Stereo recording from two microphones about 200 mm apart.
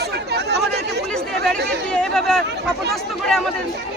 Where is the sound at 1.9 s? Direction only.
5° left (ahead or behind).